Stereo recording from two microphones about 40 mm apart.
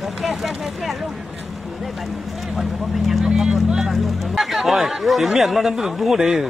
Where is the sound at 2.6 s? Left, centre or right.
Centre.